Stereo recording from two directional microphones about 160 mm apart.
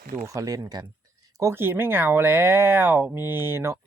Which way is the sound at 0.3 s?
20° right (ahead or behind).